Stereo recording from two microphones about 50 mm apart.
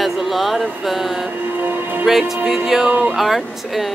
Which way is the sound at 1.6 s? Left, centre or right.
Right.